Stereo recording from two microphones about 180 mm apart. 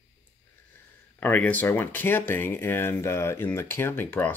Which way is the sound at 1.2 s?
10° left (ahead or behind).